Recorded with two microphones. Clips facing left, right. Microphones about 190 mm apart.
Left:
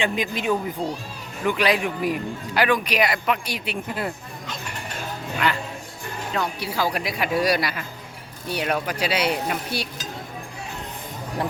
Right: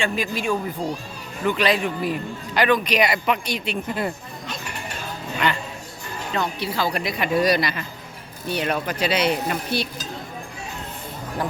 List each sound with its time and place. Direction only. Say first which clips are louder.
0.0 s speech: even; 20° left (ahead or behind)
5.4 s a man's voice: right 1 dB; 5° left (ahead or behind)